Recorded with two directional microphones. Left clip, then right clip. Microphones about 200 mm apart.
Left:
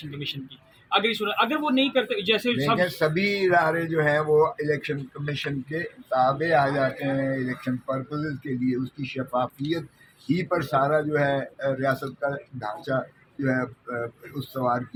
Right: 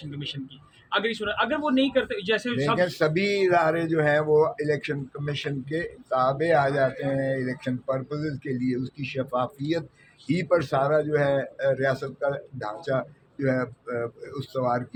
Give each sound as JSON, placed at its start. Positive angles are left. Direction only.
{"t": 0.9, "sound": "a man's voice", "side_deg": 45}
{"t": 2.6, "sound": "a man's voice", "side_deg": -20}